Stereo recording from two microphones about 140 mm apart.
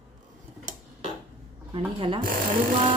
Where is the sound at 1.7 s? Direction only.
40° right (ahead or behind).